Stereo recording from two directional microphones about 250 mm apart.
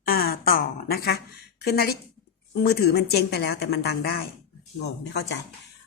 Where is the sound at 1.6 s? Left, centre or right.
Left.